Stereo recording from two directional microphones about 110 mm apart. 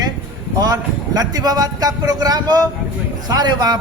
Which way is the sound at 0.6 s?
35° right (ahead or behind).